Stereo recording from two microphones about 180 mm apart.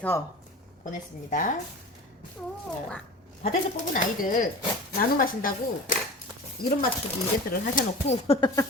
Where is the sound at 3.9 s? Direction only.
50° left (ahead or behind).